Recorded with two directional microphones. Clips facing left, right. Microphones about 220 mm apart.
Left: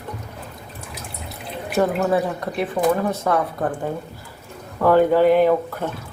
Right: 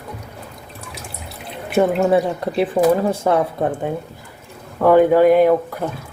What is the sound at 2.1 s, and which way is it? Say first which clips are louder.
Speech: right 4 dB; 25° right (ahead or behind).